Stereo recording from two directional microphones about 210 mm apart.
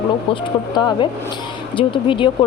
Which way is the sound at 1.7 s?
25° left (ahead or behind).